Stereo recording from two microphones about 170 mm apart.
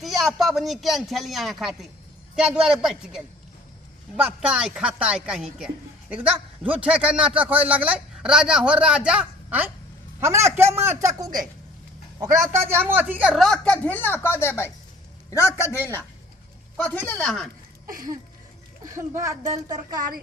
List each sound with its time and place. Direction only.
0.0 s a woman's voice: centre (ahead or behind)
4.2 s a woman's voice: 5° right (ahead or behind)
18.9 s speech: 15° right (ahead or behind)